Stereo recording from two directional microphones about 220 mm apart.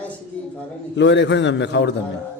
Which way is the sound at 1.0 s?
55° left (ahead or behind).